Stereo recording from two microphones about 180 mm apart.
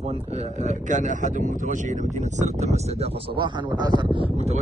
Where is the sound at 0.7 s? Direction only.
45° right (ahead or behind).